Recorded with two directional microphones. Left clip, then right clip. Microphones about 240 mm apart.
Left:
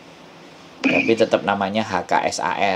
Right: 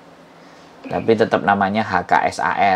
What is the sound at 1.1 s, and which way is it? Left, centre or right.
Speech, centre.